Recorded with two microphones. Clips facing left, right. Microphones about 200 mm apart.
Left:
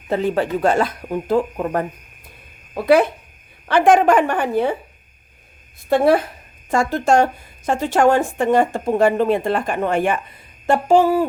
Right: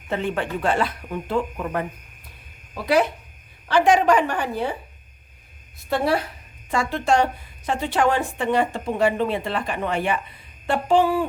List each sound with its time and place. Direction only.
0.1 s speech: 35° left (ahead or behind)
2.7 s a woman's voice: 55° left (ahead or behind)
5.9 s a woman's voice: 50° left (ahead or behind)